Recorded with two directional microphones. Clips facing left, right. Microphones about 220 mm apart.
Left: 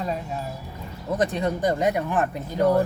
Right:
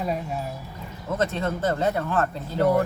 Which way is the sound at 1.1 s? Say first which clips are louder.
Left 2 dB; 15° left (ahead or behind).